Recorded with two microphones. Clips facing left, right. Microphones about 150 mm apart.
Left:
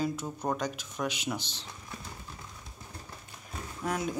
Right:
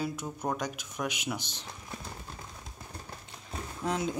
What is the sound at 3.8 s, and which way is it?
Speech, 25° right (ahead or behind).